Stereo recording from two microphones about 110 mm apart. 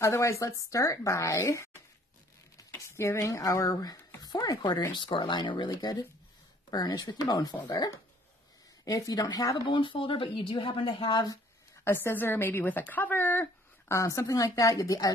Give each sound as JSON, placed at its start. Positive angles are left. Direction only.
{"t": 0.0, "sound": "speech", "side_deg": 25}
{"t": 9.8, "sound": "speech", "side_deg": 50}
{"t": 11.8, "sound": "a woman's voice", "side_deg": 20}
{"t": 13.9, "sound": "speech", "side_deg": 30}